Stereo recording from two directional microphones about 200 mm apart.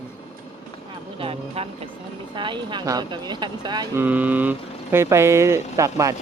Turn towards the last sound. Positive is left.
turn(degrees=-15)  # may be behind; listen again after turning